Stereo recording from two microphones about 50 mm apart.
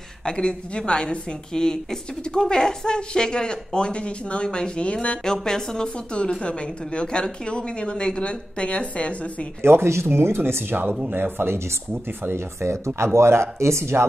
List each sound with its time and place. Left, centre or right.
0.2 s a woman's voice: centre
9.6 s speech: right
12.3 s speech: right